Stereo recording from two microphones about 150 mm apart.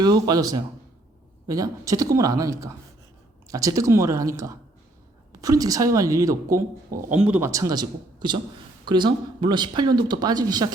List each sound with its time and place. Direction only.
0.0 s speech: 25° right (ahead or behind); by 7.5 s 10° right (ahead or behind)
7.5 s speech: 25° right (ahead or behind)